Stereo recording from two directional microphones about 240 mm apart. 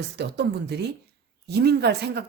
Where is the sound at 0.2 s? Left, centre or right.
Right.